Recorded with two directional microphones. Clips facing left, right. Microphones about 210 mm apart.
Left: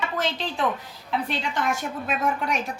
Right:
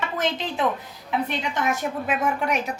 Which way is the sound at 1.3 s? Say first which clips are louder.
Right 1 dB; 20° right (ahead or behind).